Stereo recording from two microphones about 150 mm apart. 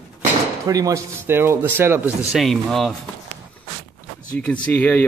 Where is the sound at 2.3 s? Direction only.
Centre (ahead or behind).